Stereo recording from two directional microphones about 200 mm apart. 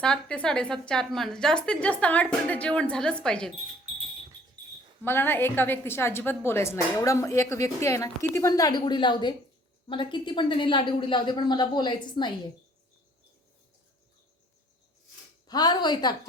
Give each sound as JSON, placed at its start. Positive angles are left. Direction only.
{"t": 0.0, "sound": "a woman's voice", "side_deg": 5}
{"t": 5.0, "sound": "a woman's voice", "side_deg": 10}
{"t": 15.4, "sound": "a woman's voice", "side_deg": 20}